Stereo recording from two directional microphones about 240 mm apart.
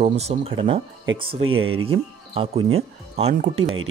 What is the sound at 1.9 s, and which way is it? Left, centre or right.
Speech, right.